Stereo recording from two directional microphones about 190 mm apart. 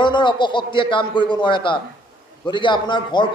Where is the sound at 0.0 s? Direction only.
25° left (ahead or behind).